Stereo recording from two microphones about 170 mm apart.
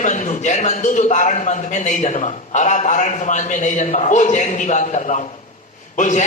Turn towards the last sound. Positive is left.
turn(degrees=45)  # may be behind; listen again after turning